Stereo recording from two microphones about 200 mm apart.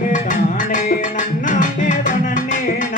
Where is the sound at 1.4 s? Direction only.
40° left (ahead or behind).